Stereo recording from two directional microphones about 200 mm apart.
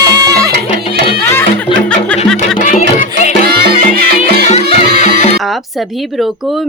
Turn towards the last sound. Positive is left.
turn(degrees=35)  # may be behind; listen again after turning